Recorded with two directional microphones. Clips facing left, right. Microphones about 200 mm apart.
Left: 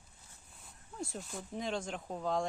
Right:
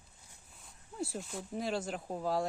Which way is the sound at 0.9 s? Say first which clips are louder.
Right 3 dB; 5° right (ahead or behind).